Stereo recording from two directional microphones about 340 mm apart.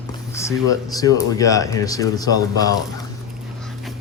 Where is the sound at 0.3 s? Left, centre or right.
Centre.